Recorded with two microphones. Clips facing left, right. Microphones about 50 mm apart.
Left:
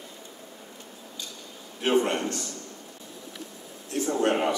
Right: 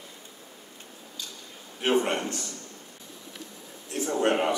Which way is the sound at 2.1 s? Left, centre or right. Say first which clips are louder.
Left 1 dB; centre.